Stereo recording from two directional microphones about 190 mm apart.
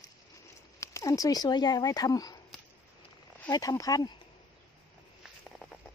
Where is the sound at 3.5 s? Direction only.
20° left (ahead or behind).